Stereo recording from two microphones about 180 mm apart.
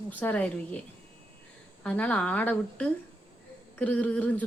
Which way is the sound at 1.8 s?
5° left (ahead or behind).